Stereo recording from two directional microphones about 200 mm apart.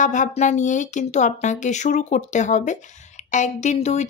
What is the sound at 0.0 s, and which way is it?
Speech, 40° left (ahead or behind).